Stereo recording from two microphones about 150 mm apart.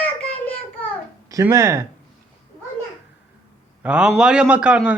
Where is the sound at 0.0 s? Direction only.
10° left (ahead or behind).